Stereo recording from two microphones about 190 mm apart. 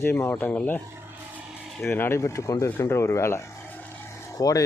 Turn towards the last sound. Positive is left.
turn(degrees=20)  # may be behind; listen again after turning